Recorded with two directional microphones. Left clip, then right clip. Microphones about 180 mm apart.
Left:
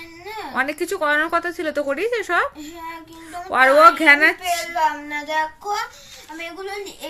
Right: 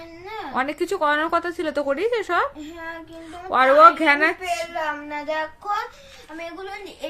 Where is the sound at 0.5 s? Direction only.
5° right (ahead or behind).